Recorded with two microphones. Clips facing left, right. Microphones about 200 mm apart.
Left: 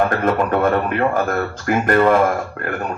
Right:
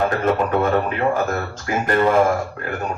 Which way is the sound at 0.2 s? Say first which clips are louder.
Left 1 dB; 55° left (ahead or behind).